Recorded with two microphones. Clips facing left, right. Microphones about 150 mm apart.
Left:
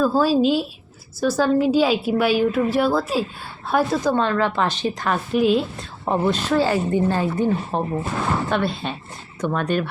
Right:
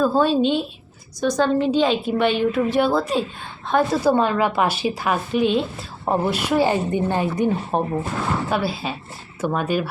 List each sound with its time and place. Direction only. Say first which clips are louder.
0.0 s a woman's voice: even; 5° left (ahead or behind)
4.1 s speech: right 1 dB; 10° right (ahead or behind)
6.1 s speech: even; 10° right (ahead or behind)
8.4 s a woman's voice: even; 5° right (ahead or behind)